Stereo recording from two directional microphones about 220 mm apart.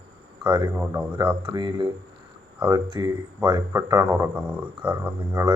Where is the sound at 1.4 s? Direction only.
20° right (ahead or behind).